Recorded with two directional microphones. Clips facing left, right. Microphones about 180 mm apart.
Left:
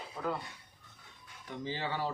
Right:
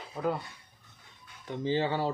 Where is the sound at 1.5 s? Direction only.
30° right (ahead or behind).